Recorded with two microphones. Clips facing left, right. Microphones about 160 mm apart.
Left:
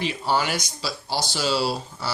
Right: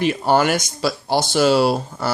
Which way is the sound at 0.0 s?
55° right (ahead or behind).